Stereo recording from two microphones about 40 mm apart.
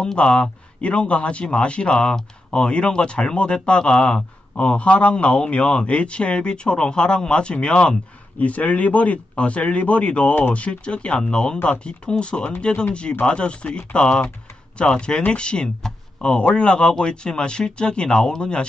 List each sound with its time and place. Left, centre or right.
0.0 s speech: left
4.6 s speech: left
8.4 s speech: left